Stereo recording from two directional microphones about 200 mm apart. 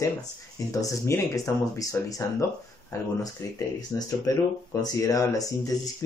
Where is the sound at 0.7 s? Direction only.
15° left (ahead or behind).